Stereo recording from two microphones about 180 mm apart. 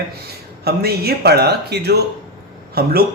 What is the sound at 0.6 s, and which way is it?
A man's voice, 60° right (ahead or behind).